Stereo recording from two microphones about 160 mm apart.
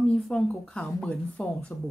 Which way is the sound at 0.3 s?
5° left (ahead or behind).